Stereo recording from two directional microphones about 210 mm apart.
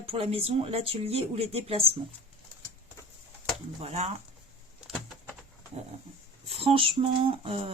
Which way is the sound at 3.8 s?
30° right (ahead or behind).